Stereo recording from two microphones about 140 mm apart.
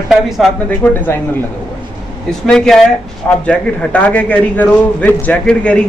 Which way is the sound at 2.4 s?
5° left (ahead or behind).